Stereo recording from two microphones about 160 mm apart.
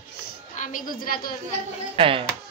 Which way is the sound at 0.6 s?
55° left (ahead or behind).